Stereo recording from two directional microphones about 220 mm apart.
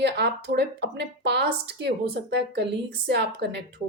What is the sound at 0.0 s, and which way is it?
Speech, 50° right (ahead or behind).